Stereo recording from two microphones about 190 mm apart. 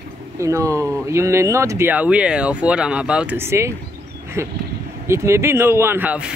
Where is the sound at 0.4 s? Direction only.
15° right (ahead or behind).